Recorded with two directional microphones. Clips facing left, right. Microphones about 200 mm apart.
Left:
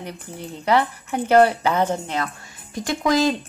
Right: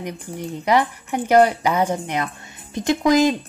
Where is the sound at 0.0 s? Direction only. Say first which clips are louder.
Right 4 dB; 15° right (ahead or behind).